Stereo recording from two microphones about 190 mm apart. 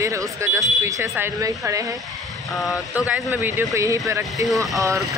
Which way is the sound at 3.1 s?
10° right (ahead or behind).